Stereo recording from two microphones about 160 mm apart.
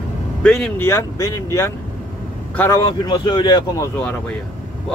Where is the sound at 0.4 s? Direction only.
5° left (ahead or behind).